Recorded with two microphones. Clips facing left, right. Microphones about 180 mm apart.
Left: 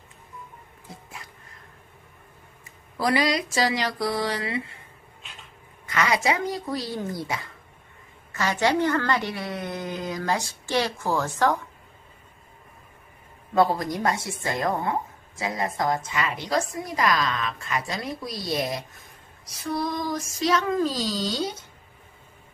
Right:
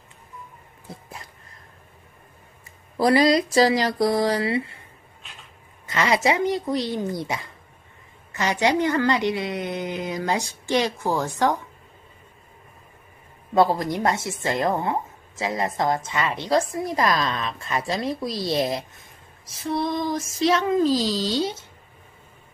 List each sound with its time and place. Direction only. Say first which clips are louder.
3.0 s speech: right 6 dB; 35° right (ahead or behind)
5.9 s a woman's voice: right 3 dB; 25° right (ahead or behind)
13.6 s a woman's voice: right 2 dB; 25° right (ahead or behind)